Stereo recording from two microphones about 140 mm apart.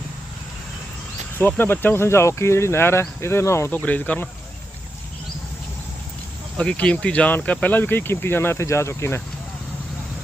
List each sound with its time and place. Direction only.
1.4 s speech: 15° left (ahead or behind)
6.6 s speech: 5° left (ahead or behind)